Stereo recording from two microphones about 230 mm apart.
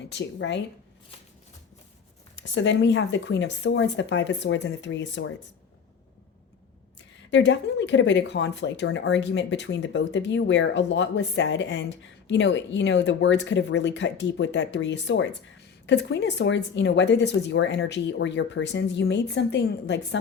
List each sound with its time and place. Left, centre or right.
0.1 s speech: left
2.3 s speech: left
7.3 s speech: left